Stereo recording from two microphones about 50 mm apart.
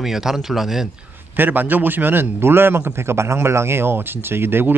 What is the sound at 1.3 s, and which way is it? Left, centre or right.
A man's voice, right.